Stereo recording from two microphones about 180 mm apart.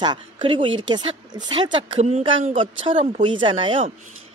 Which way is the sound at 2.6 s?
30° right (ahead or behind).